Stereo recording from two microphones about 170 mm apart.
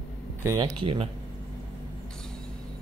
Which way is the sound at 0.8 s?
30° right (ahead or behind).